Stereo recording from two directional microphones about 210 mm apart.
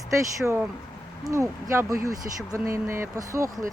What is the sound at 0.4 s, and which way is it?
Speech, centre (ahead or behind).